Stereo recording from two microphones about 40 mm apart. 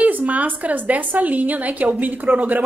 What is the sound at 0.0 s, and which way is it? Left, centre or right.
A woman's voice, right.